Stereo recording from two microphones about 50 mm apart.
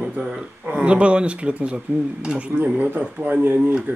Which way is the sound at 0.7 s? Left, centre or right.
Right.